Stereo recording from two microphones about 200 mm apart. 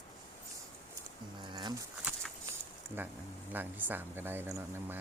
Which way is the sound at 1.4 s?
20° right (ahead or behind).